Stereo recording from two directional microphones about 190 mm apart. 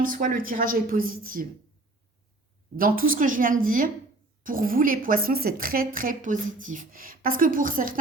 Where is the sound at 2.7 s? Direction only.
50° right (ahead or behind).